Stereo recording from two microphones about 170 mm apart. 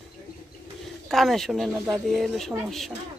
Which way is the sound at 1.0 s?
Centre (ahead or behind).